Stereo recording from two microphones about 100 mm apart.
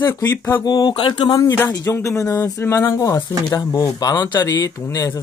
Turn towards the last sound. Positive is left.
turn(degrees=30)  # may be behind; listen again after turning